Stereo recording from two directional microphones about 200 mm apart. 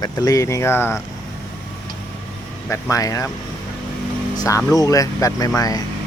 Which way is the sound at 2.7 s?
15° left (ahead or behind).